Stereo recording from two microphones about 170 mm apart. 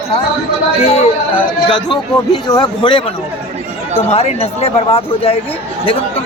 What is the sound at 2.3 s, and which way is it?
Speech, 25° left (ahead or behind).